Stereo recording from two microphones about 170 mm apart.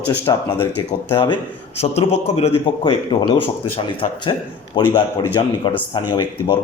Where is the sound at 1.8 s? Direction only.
40° left (ahead or behind).